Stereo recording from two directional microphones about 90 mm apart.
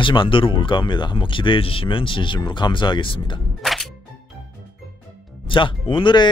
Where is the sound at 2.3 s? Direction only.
55° left (ahead or behind).